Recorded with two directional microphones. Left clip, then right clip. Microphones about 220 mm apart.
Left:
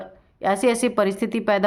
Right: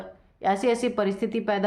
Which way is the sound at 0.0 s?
30° left (ahead or behind).